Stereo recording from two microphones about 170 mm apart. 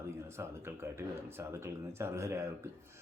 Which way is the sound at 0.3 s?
15° right (ahead or behind).